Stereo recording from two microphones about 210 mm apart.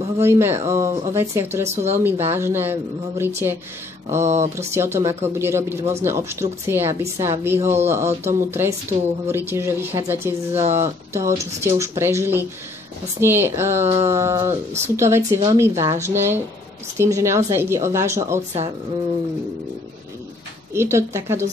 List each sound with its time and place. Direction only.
0.2 s a woman's voice: 10° right (ahead or behind)
13.8 s a sound: 30° right (ahead or behind)
14.1 s a woman's voice: 15° right (ahead or behind)
20.7 s a woman's voice: 10° right (ahead or behind)